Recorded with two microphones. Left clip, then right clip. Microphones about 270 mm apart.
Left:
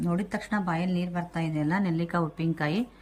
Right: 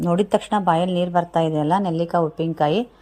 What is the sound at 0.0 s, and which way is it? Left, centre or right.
A woman's voice, right.